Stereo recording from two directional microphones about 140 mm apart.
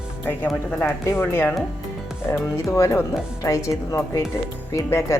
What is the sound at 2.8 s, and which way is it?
A woman's voice, 20° left (ahead or behind).